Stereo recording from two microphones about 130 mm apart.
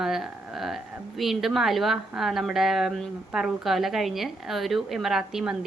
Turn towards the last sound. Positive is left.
turn(degrees=-5)  # may be behind; listen again after turning